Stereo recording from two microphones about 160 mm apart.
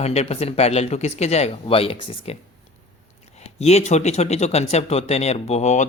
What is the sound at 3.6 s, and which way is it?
Speech, 40° left (ahead or behind).